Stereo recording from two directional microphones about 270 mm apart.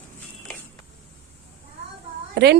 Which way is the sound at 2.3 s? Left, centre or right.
Right.